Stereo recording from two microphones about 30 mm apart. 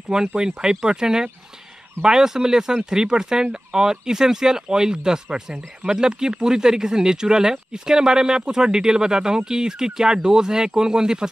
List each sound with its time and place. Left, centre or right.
0.4 s speech: right